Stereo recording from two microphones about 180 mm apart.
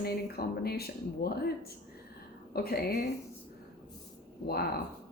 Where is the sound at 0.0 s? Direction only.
60° left (ahead or behind).